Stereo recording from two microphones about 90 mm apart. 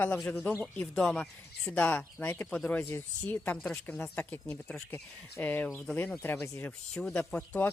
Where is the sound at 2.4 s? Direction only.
5° left (ahead or behind).